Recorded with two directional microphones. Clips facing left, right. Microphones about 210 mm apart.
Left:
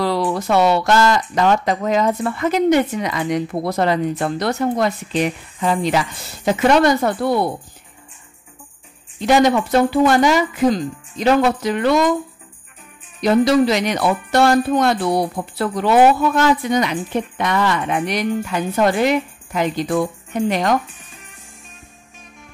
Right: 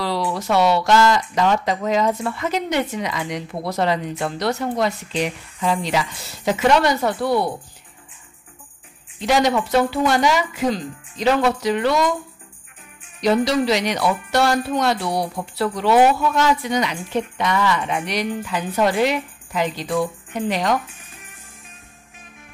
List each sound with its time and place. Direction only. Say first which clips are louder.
0.0 s speech: left 4 dB; 50° left (ahead or behind)
9.2 s speech: left 4 dB; 50° left (ahead or behind)
13.2 s speech: left 4 dB; 50° left (ahead or behind)
20.8 s speech: left 1 dB; centre (ahead or behind)